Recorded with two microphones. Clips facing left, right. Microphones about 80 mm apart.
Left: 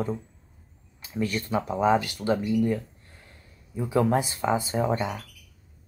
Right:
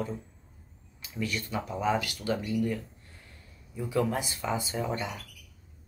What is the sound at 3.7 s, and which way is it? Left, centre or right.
Speech, left.